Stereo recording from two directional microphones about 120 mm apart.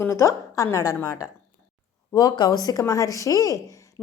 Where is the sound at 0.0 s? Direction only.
25° left (ahead or behind).